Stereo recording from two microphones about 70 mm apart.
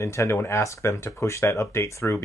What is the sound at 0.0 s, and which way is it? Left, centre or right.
Speech, left.